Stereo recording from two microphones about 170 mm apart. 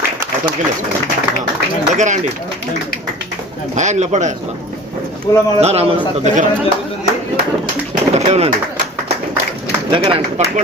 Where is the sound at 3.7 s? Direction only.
45° right (ahead or behind).